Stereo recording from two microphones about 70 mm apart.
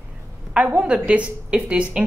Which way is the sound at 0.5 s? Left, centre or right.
Right.